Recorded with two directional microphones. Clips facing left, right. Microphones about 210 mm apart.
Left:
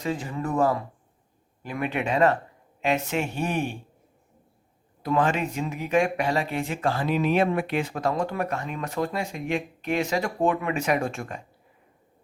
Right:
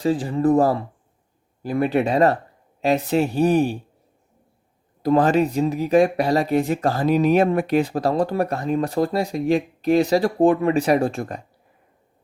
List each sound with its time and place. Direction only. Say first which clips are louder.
0.0 s speech: right 9 dB; 35° right (ahead or behind)
5.0 s speech: right 7 dB; 35° right (ahead or behind)